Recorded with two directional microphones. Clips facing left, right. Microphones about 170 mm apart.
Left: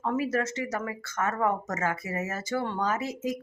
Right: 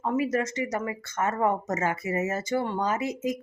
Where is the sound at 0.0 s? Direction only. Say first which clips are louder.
Right 2 dB; 15° right (ahead or behind).